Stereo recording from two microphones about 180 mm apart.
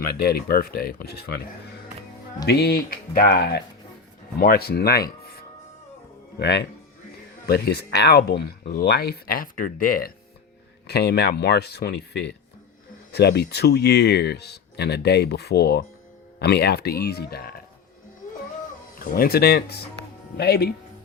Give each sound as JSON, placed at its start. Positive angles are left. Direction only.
{"t": 0.2, "sound": "speech", "side_deg": 60}
{"t": 2.5, "sound": "speech", "side_deg": 60}
{"t": 6.4, "sound": "speech", "side_deg": 70}
{"t": 10.8, "sound": "speech", "side_deg": 65}
{"t": 13.1, "sound": "speech", "side_deg": 65}
{"t": 18.9, "sound": "speech", "side_deg": 55}